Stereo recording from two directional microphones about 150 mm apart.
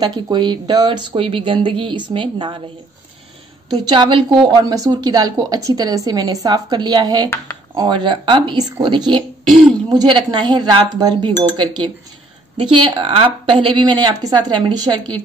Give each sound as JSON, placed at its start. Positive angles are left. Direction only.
{"t": 0.0, "sound": "speech", "side_deg": -30}
{"t": 3.7, "sound": "a woman's voice", "side_deg": -30}